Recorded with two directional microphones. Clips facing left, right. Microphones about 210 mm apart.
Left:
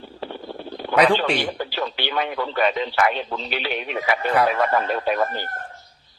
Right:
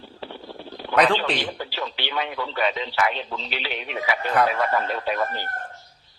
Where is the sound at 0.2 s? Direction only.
50° left (ahead or behind).